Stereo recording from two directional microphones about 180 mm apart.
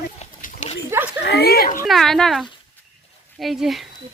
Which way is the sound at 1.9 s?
Centre (ahead or behind).